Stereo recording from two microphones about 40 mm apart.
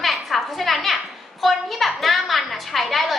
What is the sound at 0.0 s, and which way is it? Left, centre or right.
Music, centre.